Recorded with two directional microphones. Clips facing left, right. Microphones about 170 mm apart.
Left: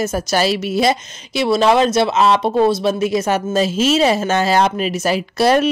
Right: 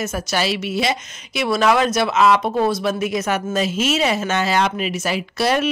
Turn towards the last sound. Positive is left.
turn(degrees=40)  # may be behind; listen again after turning